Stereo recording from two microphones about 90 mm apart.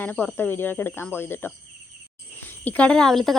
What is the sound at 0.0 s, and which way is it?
Speech, 20° left (ahead or behind).